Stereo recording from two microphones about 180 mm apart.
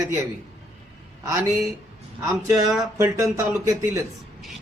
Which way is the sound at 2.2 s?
20° right (ahead or behind).